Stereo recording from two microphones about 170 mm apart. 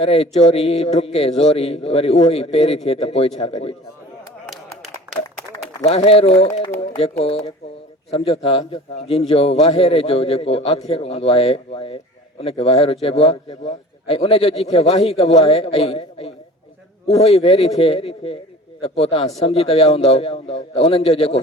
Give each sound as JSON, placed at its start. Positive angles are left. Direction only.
{"t": 0.0, "sound": "a man's voice", "side_deg": 35}
{"t": 5.8, "sound": "a man's voice", "side_deg": 35}